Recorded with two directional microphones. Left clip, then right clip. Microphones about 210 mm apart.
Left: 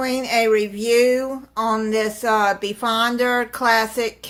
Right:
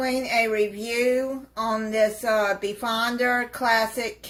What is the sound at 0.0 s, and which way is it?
Speech, 40° left (ahead or behind).